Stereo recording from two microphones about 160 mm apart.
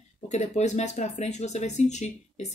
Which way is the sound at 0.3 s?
45° left (ahead or behind).